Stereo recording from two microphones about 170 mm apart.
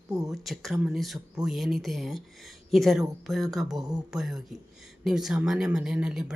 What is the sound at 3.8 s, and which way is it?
Speech, 20° right (ahead or behind).